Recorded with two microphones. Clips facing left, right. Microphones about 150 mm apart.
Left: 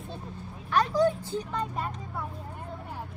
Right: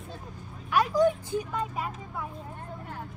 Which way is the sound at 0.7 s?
10° right (ahead or behind).